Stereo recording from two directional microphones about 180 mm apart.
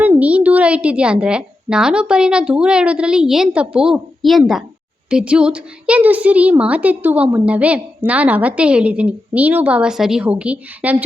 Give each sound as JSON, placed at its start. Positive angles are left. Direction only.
{"t": 0.0, "sound": "a woman's voice", "side_deg": -5}